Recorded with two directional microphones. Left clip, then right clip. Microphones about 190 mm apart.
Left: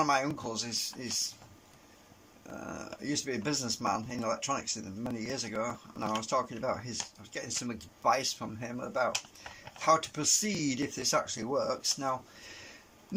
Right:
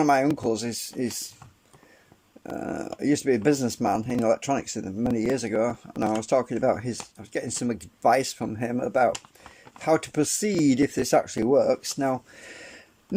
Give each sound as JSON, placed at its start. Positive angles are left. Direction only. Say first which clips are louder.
{"t": 0.0, "sound": "speech", "louder": "right 8 dB", "side_deg": -45}
{"t": 2.6, "sound": "speech", "louder": "right 10 dB", "side_deg": -45}